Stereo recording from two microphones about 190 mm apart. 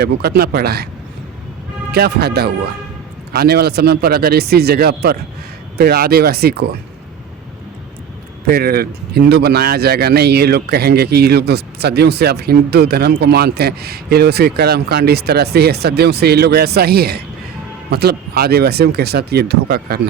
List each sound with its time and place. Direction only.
0.0 s speech: 55° right (ahead or behind)
1.9 s speech: 55° right (ahead or behind)
8.4 s speech: 55° right (ahead or behind)